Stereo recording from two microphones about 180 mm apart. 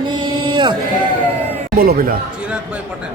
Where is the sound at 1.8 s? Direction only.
55° right (ahead or behind).